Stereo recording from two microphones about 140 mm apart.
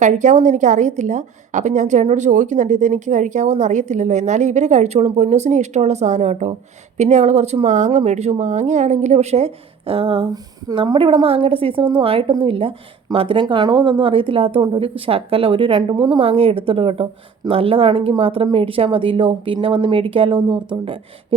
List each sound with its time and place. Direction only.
0.0 s a woman's voice: 60° right (ahead or behind); by 10.2 s 40° right (ahead or behind)
10.3 s speech: 30° right (ahead or behind)